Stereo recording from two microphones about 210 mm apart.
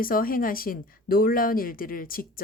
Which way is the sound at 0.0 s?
45° left (ahead or behind).